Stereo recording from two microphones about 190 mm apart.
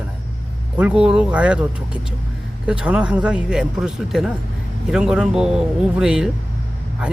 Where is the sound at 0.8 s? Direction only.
5° right (ahead or behind).